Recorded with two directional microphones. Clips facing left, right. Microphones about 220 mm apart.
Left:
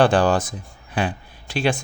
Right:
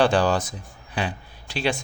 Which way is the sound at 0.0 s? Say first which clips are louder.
Left 3 dB; 50° left (ahead or behind).